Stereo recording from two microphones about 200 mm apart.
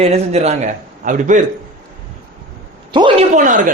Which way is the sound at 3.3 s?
40° right (ahead or behind).